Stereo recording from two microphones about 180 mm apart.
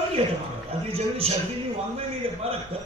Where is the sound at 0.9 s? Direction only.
30° right (ahead or behind).